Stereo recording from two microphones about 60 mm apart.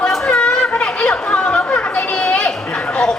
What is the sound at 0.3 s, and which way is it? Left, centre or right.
Chatter, centre.